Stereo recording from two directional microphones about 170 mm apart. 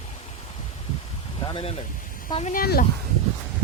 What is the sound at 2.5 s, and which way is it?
Speech, 65° left (ahead or behind).